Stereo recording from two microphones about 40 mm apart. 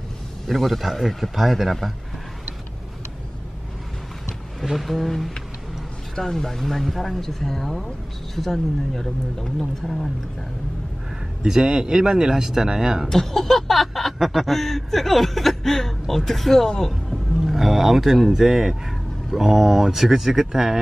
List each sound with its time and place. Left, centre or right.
0.5 s speech: centre
4.6 s speech: centre
11.4 s speech: centre
13.1 s speech: centre